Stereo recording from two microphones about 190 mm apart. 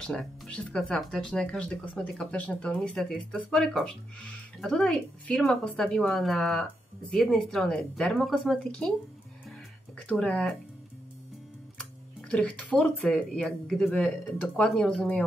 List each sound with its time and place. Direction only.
0.0 s speech: 5° left (ahead or behind)
9.9 s speech: 5° left (ahead or behind)
12.3 s speech: 5° left (ahead or behind)